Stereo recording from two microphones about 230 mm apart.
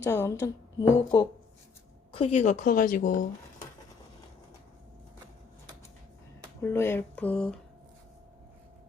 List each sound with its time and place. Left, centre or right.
0.0 s speech: centre
2.1 s speech: left
6.6 s speech: centre